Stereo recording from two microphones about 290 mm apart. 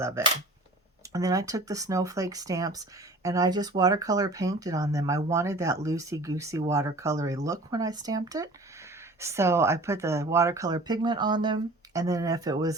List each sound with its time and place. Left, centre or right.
1.1 s speech: centre